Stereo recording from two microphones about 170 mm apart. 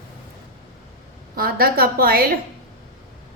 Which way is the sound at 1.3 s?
60° right (ahead or behind).